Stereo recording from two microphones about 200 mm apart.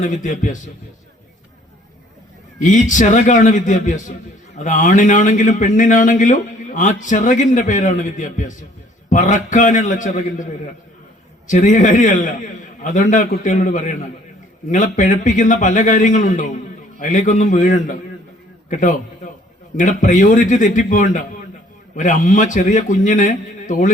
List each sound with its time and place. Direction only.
0.0 s a man's voice: 40° left (ahead or behind)
2.6 s a man's voice: 40° left (ahead or behind)